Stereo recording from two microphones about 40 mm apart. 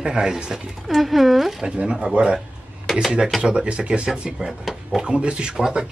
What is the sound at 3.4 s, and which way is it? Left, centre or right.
Speech, right.